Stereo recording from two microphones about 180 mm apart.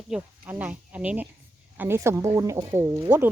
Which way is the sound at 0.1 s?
10° right (ahead or behind).